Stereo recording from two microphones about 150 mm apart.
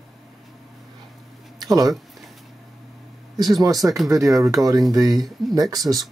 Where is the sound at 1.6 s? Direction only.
25° right (ahead or behind).